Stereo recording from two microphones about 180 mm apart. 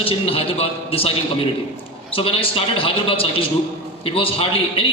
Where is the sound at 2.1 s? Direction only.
30° left (ahead or behind).